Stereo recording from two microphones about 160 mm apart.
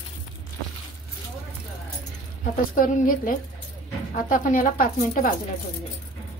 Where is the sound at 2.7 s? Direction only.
60° left (ahead or behind).